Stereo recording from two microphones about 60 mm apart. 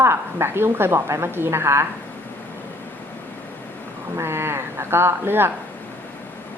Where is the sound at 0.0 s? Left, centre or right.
Right.